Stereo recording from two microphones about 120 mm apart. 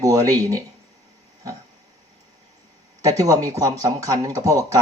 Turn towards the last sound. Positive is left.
turn(degrees=-30)  # may be behind; listen again after turning